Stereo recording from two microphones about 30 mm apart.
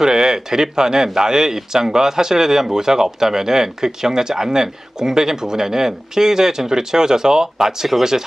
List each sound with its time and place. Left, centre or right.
0.0 s a man's voice: right